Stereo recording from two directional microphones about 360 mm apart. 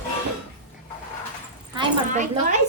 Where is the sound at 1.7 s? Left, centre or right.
Centre.